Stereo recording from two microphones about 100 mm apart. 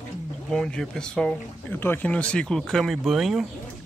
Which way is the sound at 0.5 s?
5° left (ahead or behind).